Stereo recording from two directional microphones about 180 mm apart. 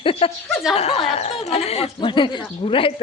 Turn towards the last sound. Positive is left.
turn(degrees=30)  # may be behind; listen again after turning